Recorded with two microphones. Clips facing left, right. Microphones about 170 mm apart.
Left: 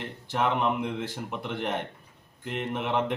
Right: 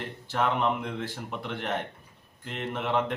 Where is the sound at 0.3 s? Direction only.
15° left (ahead or behind).